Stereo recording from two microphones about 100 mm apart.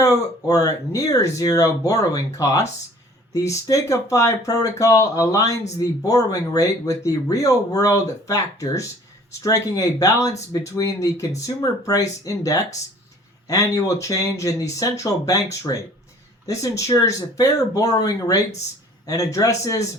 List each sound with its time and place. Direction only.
0.0 s speech: 35° left (ahead or behind)
16.5 s speech: 30° left (ahead or behind)